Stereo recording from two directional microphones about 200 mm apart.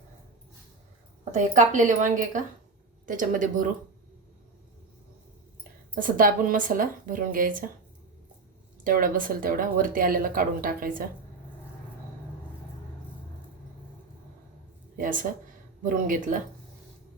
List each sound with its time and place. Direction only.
1.2 s a woman's voice: 35° right (ahead or behind)
5.9 s speech: 45° right (ahead or behind)
8.8 s speech: 45° right (ahead or behind)
14.9 s a woman's voice: 45° right (ahead or behind)